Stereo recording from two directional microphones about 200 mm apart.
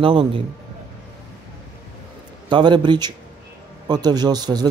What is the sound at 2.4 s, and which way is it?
A man's voice, 25° right (ahead or behind).